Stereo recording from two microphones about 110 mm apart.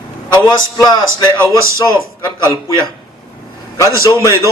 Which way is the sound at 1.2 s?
25° right (ahead or behind).